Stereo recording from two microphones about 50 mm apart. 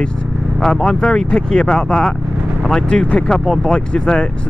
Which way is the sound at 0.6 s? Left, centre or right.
Centre.